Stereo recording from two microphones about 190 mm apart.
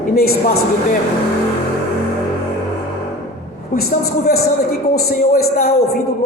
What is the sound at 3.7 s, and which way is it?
A man's voice, 55° left (ahead or behind).